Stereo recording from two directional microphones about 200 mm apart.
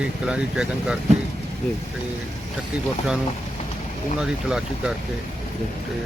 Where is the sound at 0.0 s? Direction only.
5° right (ahead or behind).